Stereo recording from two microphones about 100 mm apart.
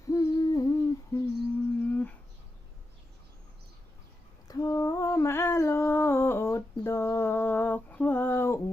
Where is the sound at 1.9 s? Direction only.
15° left (ahead or behind).